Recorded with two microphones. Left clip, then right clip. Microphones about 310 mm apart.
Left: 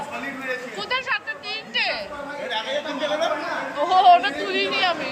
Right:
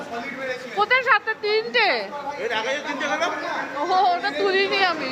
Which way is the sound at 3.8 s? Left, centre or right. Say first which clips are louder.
Left 5 dB; centre.